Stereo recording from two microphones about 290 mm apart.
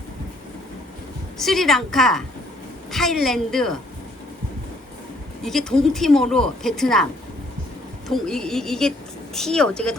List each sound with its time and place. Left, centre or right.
1.4 s speech: centre
5.4 s speech: centre